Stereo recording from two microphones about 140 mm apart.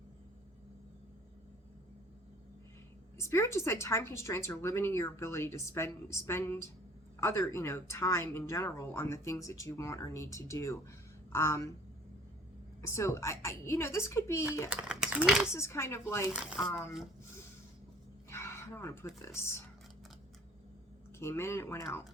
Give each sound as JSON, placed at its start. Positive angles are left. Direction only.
{"t": 3.2, "sound": "speech", "side_deg": 20}
{"t": 12.8, "sound": "speech", "side_deg": 20}
{"t": 14.7, "sound": "speech", "side_deg": -10}
{"t": 15.5, "sound": "speech", "side_deg": 20}
{"t": 16.3, "sound": "speech", "side_deg": -5}
{"t": 18.3, "sound": "a sound", "side_deg": 20}
{"t": 19.2, "sound": "speech", "side_deg": 20}
{"t": 21.2, "sound": "speech", "side_deg": 20}